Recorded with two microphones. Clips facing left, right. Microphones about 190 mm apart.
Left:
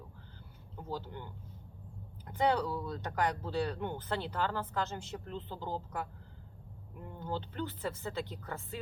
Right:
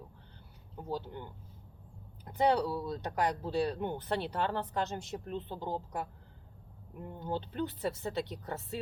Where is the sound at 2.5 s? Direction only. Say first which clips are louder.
Right 2 dB; 30° right (ahead or behind).